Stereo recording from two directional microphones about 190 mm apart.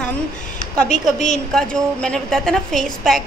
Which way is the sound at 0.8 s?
40° left (ahead or behind).